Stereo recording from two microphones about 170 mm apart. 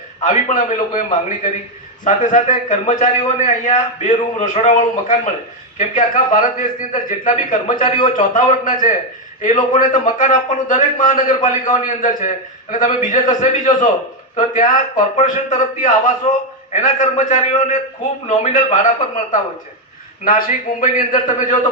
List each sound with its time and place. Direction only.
0.2 s a man's voice: 50° left (ahead or behind)
7.9 s a man's voice: 30° left (ahead or behind)
8.3 s a man's voice: 50° left (ahead or behind)